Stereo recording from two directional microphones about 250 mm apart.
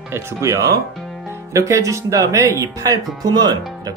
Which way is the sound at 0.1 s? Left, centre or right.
Centre.